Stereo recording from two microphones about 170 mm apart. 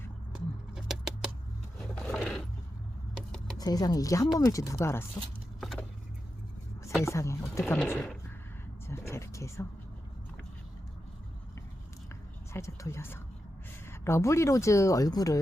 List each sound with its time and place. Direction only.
0.3 s bird: 5° right (ahead or behind)
2.0 s mechanisms: 5° left (ahead or behind)
3.6 s speech: 20° left (ahead or behind)
5.5 s vehicle: centre (ahead or behind)
7.0 s speech: 15° left (ahead or behind)
8.9 s speech: 15° left (ahead or behind)
12.5 s speech: 15° left (ahead or behind)